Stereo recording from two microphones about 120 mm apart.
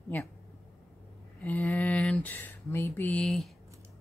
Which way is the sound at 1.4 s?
15° left (ahead or behind).